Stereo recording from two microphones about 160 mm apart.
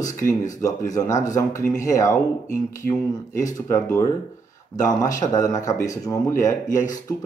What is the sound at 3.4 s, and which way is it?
Speech, 20° left (ahead or behind).